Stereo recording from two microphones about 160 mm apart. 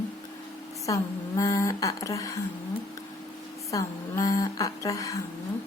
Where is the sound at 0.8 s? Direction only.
20° left (ahead or behind).